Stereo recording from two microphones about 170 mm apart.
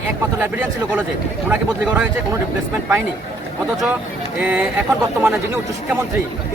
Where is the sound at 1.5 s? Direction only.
10° right (ahead or behind).